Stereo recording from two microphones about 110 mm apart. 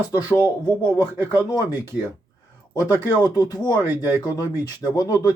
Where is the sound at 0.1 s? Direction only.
30° left (ahead or behind).